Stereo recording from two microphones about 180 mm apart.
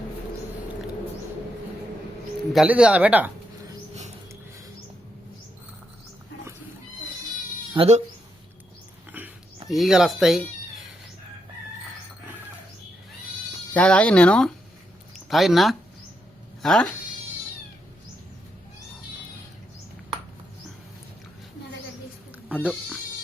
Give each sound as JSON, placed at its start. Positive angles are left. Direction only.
{"t": 2.5, "sound": "speech", "side_deg": -5}
{"t": 7.7, "sound": "speech", "side_deg": -35}
{"t": 9.2, "sound": "dog", "side_deg": -10}
{"t": 9.6, "sound": "speech", "side_deg": 0}
{"t": 13.7, "sound": "speech", "side_deg": 5}